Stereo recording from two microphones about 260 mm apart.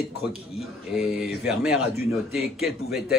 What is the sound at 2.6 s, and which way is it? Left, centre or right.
Speech, left.